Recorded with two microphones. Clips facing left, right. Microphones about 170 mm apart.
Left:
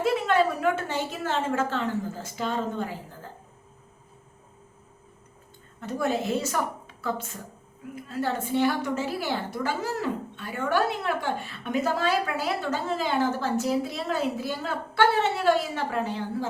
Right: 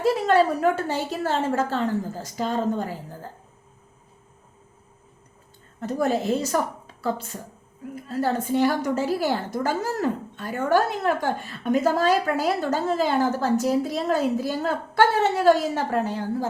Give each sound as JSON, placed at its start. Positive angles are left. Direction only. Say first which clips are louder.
{"t": 0.0, "sound": "a woman's voice", "louder": "right 3 dB", "side_deg": -40}
{"t": 5.8, "sound": "a woman's voice", "louder": "right 4 dB", "side_deg": -40}